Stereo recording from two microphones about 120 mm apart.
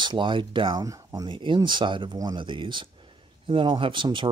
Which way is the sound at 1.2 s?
40° right (ahead or behind).